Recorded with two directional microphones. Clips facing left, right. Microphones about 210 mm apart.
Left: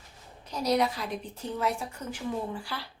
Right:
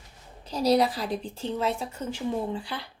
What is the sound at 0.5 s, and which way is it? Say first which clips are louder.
A woman's voice: right 4 dB; 30° right (ahead or behind).